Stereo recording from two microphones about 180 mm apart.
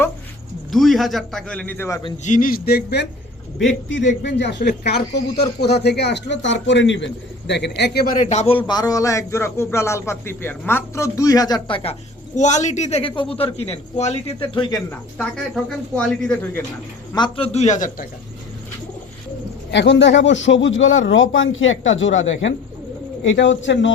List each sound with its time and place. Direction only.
0.7 s a man's voice: centre (ahead or behind)
2.2 s a man's voice: 45° left (ahead or behind); by 3.1 s 65° left (ahead or behind)
3.6 s a man's voice: 85° left; by 8.5 s 40° left (ahead or behind)
8.6 s a man's voice: 20° left (ahead or behind)
12.4 s a man's voice: 40° left (ahead or behind); by 14.8 s 25° left (ahead or behind)
16.0 s a man's voice: 5° left (ahead or behind)
17.2 s a man's voice: 30° left (ahead or behind); by 18.0 s 45° left (ahead or behind)
19.7 s speech: 80° left